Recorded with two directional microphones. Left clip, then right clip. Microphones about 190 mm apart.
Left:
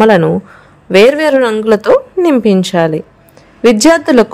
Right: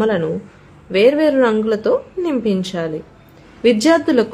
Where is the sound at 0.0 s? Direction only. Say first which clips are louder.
Left 10 dB; 50° left (ahead or behind).